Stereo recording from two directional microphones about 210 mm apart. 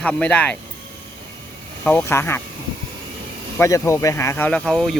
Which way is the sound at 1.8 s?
10° left (ahead or behind).